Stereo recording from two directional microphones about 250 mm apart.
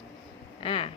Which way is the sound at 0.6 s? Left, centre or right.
Left.